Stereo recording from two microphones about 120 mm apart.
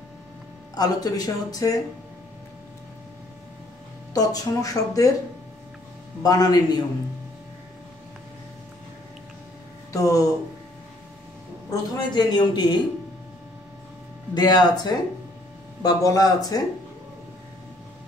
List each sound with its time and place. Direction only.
0.7 s speech: 35° left (ahead or behind)
4.1 s speech: 30° left (ahead or behind)
6.2 s speech: 30° left (ahead or behind)
9.9 s speech: 30° left (ahead or behind)
11.9 s speech: 40° left (ahead or behind)
14.3 s speech: 35° left (ahead or behind)